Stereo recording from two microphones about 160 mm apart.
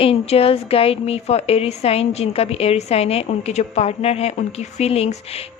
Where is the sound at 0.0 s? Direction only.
40° left (ahead or behind).